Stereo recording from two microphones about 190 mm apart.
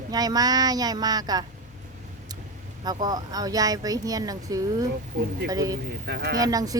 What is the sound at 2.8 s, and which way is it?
Speech, 20° right (ahead or behind).